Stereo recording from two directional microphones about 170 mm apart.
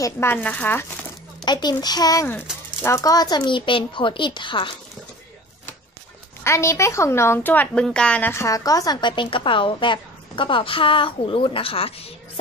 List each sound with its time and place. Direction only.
0.0 s speech: 15° left (ahead or behind)
1.4 s a woman's voice: 25° left (ahead or behind)
6.4 s a woman's voice: 15° left (ahead or behind); by 12.1 s 35° left (ahead or behind)